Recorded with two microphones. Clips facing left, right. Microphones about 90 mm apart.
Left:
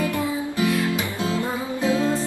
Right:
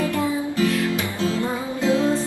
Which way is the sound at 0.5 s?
15° left (ahead or behind).